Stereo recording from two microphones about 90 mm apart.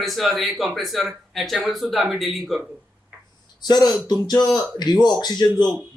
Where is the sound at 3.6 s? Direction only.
50° left (ahead or behind).